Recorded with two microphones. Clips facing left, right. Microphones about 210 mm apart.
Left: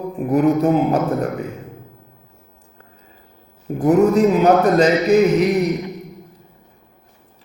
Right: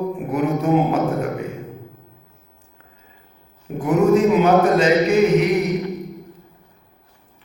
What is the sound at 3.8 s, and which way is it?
Speech, 40° left (ahead or behind).